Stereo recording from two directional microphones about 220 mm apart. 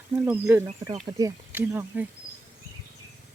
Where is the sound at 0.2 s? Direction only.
10° right (ahead or behind).